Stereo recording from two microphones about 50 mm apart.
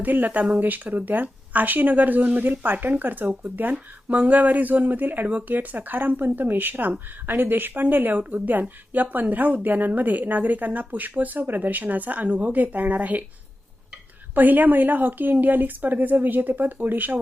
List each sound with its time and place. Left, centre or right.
0.0 s speech: right
14.3 s speech: right